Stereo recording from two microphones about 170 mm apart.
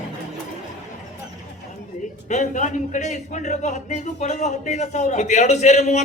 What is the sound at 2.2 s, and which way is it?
A man's voice, 45° left (ahead or behind).